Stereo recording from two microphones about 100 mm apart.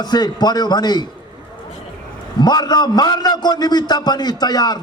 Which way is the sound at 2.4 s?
45° left (ahead or behind).